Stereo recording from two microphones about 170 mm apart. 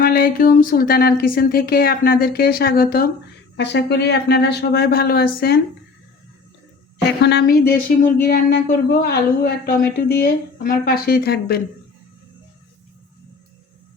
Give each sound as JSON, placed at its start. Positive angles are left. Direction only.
{"t": 0.0, "sound": "speech", "side_deg": 60}
{"t": 3.6, "sound": "speech", "side_deg": 85}
{"t": 7.2, "sound": "speech", "side_deg": 75}